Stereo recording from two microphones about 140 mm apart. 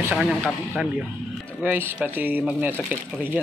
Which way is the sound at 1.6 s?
15° right (ahead or behind).